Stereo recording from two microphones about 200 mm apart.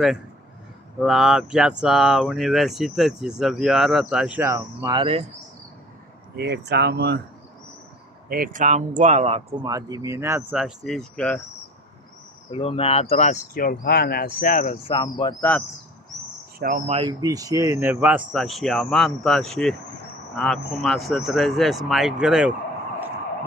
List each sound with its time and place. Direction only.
1.0 s speech: centre (ahead or behind)
4.8 s speech: 25° right (ahead or behind)
6.3 s speech: 55° right (ahead or behind)
8.3 s speech: 45° right (ahead or behind)
9.7 s speech: 20° right (ahead or behind); by 11.4 s 5° left (ahead or behind)
12.4 s speech: 25° left (ahead or behind)
14.9 s speech: 25° left (ahead or behind)
16.5 s speech: 45° right (ahead or behind)
16.9 s speech: 20° right (ahead or behind); by 22.5 s 5° right (ahead or behind)